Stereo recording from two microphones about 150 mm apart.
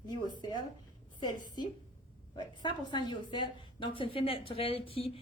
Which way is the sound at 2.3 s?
30° left (ahead or behind).